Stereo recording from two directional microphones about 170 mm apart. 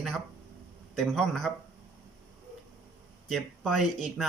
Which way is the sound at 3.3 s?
Centre (ahead or behind).